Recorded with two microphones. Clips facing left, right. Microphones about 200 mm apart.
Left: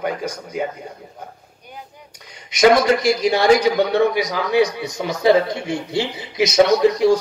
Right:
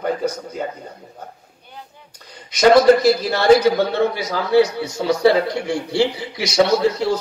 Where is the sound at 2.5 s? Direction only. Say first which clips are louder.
Right 3 dB; 10° left (ahead or behind).